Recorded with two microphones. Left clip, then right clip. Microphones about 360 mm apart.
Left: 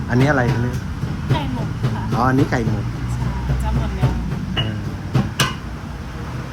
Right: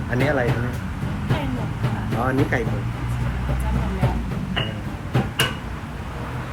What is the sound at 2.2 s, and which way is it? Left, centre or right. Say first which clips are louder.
Speech: left 4 dB; centre.